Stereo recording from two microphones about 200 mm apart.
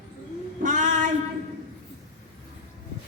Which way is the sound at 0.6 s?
40° right (ahead or behind).